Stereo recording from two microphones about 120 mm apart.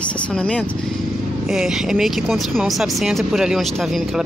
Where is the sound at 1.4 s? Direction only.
5° right (ahead or behind).